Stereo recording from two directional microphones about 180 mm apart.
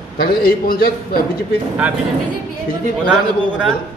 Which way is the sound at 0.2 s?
55° left (ahead or behind).